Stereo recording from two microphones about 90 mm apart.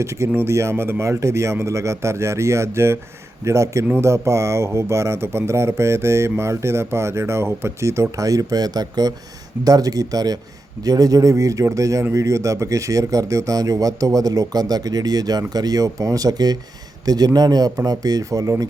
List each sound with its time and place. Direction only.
0.0 s speech: 30° right (ahead or behind)